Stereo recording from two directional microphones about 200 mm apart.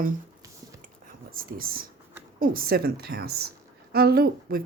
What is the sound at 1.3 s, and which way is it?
Speech, 45° right (ahead or behind).